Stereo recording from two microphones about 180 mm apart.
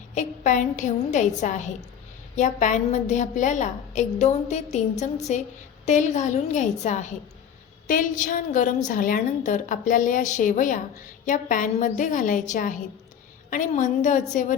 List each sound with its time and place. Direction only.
0.1 s a woman's voice: 45° left (ahead or behind)